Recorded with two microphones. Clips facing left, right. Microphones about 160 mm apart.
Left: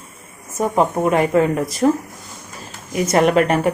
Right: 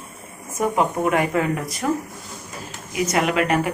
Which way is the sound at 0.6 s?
30° left (ahead or behind).